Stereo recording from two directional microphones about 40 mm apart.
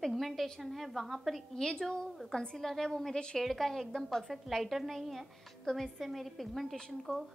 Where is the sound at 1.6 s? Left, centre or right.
Centre.